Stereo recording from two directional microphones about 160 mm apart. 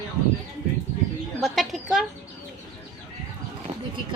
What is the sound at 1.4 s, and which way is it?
Speech, centre (ahead or behind).